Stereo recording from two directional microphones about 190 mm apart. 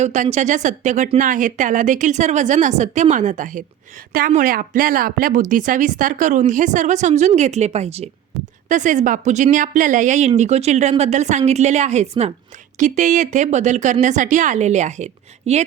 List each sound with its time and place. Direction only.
0.0 s speech: 40° right (ahead or behind)